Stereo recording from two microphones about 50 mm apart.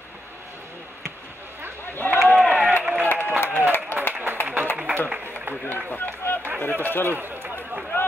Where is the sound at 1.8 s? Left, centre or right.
Left.